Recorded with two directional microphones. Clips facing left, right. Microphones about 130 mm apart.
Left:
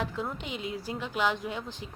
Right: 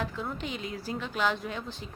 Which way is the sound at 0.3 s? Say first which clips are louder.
Even; 15° left (ahead or behind).